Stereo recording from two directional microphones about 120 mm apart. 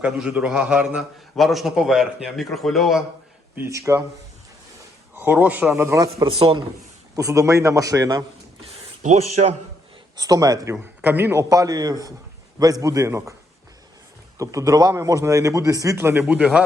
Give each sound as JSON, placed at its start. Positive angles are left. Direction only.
{"t": 0.0, "sound": "a man's voice", "side_deg": -10}
{"t": 3.5, "sound": "a man's voice", "side_deg": -20}
{"t": 5.1, "sound": "speech", "side_deg": -15}
{"t": 6.2, "sound": "speech", "side_deg": -45}
{"t": 7.2, "sound": "a man's voice", "side_deg": -25}
{"t": 10.2, "sound": "a man's voice", "side_deg": -30}
{"t": 11.4, "sound": "a man's voice", "side_deg": -30}
{"t": 14.3, "sound": "a man's voice", "side_deg": -25}
{"t": 16.2, "sound": "speech", "side_deg": -10}